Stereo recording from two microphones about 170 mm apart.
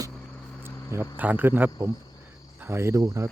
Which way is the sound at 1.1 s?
10° right (ahead or behind).